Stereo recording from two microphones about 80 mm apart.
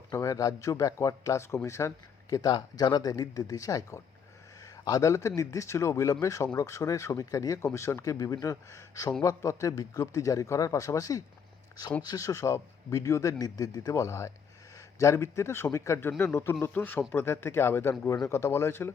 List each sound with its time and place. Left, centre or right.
0.1 s speech: left
2.3 s speech: left